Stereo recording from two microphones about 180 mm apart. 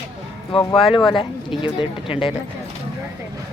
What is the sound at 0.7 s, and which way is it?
Speech, 30° left (ahead or behind).